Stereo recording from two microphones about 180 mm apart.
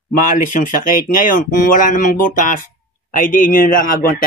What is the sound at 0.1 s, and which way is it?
Speech, 50° left (ahead or behind).